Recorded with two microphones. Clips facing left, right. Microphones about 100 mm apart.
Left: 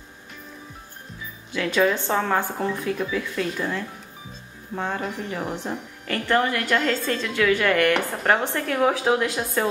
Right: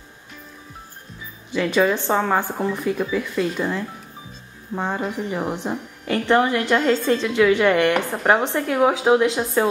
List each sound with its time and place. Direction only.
1.5 s a woman's voice: 15° right (ahead or behind)